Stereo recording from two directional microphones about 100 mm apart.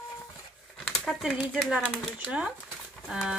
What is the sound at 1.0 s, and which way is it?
Speech, 5° left (ahead or behind).